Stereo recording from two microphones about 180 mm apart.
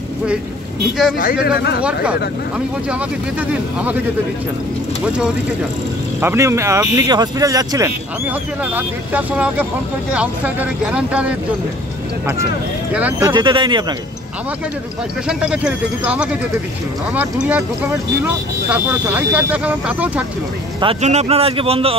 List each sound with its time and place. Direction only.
2.9 s speech: 10° right (ahead or behind)
5.0 s speech: 5° right (ahead or behind)
6.2 s speech: 15° right (ahead or behind)
12.9 s speech: 10° right (ahead or behind)
13.3 s speech: 25° right (ahead or behind)
15.2 s speech: 5° right (ahead or behind)
20.8 s speech: 35° right (ahead or behind)